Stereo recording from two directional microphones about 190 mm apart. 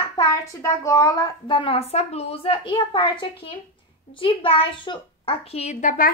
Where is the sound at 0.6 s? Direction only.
15° left (ahead or behind).